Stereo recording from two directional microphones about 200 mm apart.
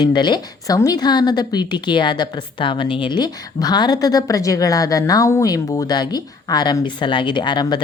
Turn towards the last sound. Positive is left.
turn(degrees=20)  # may be behind; listen again after turning